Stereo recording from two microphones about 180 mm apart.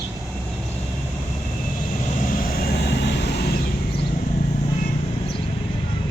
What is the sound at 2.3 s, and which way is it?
Vehicle, 55° left (ahead or behind).